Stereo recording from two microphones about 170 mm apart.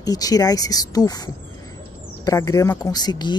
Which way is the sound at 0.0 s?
20° left (ahead or behind).